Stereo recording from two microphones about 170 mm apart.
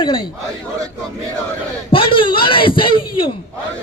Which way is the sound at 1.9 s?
30° left (ahead or behind).